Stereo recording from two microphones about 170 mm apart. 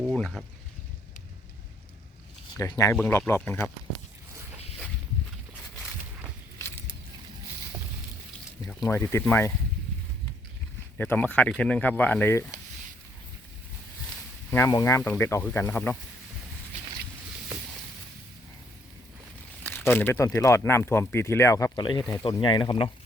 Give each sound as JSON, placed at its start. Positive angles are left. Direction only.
{"t": 0.1, "sound": "a sound", "side_deg": 0}
{"t": 2.6, "sound": "speech", "side_deg": 20}
{"t": 8.8, "sound": "speech", "side_deg": 15}
{"t": 10.9, "sound": "speech", "side_deg": 10}
{"t": 14.5, "sound": "speech", "side_deg": 15}
{"t": 19.6, "sound": "speech", "side_deg": 10}